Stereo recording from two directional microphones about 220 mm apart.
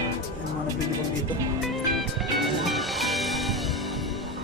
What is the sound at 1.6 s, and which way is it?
Music, centre (ahead or behind).